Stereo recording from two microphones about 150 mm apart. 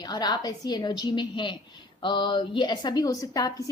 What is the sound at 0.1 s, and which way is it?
A woman's voice, 30° left (ahead or behind).